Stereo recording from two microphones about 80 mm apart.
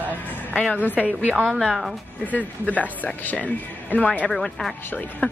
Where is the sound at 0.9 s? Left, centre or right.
Centre.